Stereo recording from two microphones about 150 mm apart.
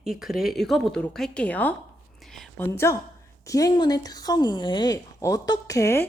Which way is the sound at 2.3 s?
Centre (ahead or behind).